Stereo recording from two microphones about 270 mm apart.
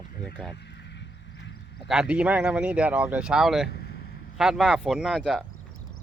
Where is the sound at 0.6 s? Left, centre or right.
Left.